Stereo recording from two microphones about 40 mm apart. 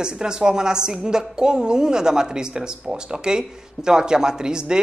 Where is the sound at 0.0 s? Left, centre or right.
Centre.